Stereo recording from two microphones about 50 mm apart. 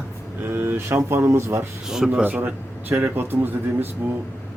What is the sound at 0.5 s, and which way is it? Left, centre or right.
A man's voice, right.